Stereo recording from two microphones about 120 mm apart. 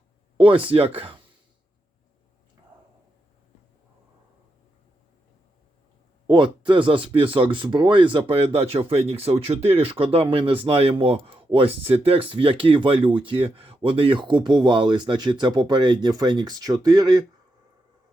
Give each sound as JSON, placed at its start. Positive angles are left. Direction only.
{"t": 0.3, "sound": "speech", "side_deg": -45}
{"t": 6.2, "sound": "speech", "side_deg": -40}